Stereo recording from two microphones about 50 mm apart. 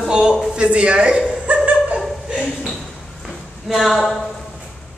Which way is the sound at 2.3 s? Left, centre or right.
Centre.